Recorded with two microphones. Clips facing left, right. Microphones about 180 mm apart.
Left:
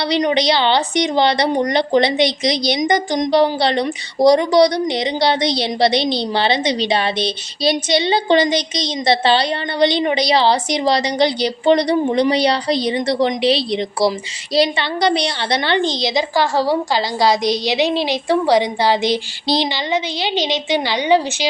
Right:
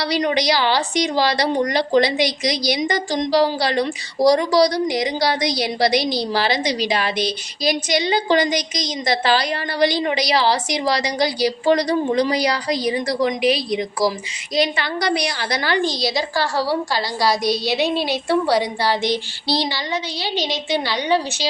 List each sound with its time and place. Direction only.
0.0 s a woman's voice: 20° left (ahead or behind)